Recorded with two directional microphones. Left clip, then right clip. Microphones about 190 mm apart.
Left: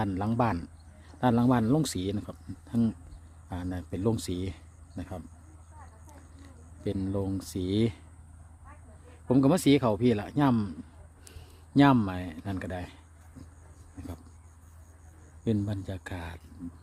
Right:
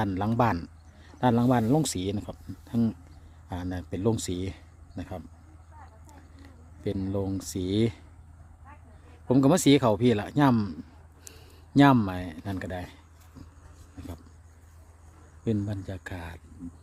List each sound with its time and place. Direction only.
0.0 s speech: 15° right (ahead or behind)
6.3 s speech: 5° right (ahead or behind)
9.2 s a man's voice: 15° right (ahead or behind)
15.4 s speech: centre (ahead or behind)